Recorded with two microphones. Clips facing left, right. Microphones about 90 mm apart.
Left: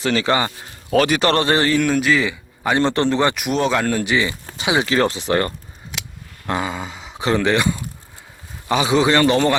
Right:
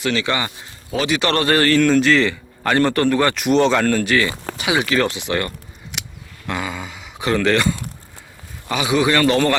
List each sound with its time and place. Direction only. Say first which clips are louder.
0.0 s speech: left 2 dB; 35° left (ahead or behind)
0.9 s a man's voice: left 3 dB; 45° left (ahead or behind); by 3.3 s 20° left (ahead or behind)
3.3 s speech: right 4 dB; 5° left (ahead or behind); by 7.4 s 30° left (ahead or behind)
7.4 s speech: right 3 dB; 15° left (ahead or behind)
8.7 s a man's voice: left 2 dB; 30° left (ahead or behind)